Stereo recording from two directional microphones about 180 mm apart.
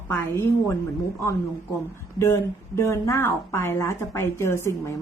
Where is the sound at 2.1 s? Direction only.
15° left (ahead or behind).